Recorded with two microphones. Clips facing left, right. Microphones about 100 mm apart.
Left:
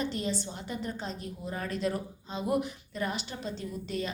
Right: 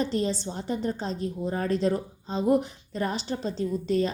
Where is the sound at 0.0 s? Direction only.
35° right (ahead or behind).